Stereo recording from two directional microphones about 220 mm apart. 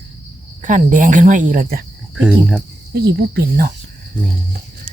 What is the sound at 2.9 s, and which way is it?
Speech, 45° right (ahead or behind).